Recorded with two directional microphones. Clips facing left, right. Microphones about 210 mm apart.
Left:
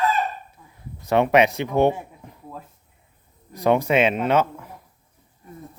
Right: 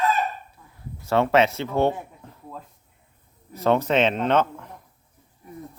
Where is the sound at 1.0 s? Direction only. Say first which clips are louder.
Left 2 dB; 15° left (ahead or behind).